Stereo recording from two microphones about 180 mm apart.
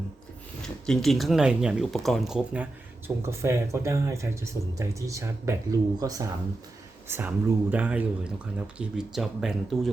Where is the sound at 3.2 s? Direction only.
15° right (ahead or behind).